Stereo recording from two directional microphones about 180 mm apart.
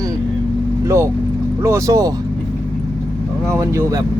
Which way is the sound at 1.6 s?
15° right (ahead or behind).